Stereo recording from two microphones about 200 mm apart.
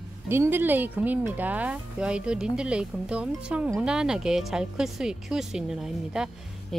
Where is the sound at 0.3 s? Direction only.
10° right (ahead or behind).